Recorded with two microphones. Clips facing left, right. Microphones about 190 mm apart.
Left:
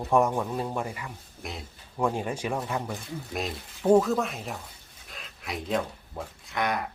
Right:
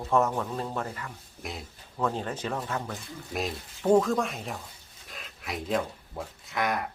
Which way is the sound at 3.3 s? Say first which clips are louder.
Right 2 dB; centre (ahead or behind).